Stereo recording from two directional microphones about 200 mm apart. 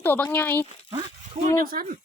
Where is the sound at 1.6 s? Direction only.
45° right (ahead or behind).